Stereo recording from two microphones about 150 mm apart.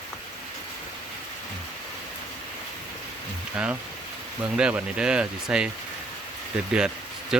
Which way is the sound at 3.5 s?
10° right (ahead or behind).